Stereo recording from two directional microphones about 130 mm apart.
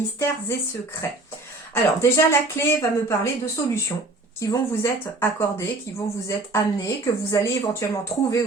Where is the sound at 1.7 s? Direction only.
20° left (ahead or behind).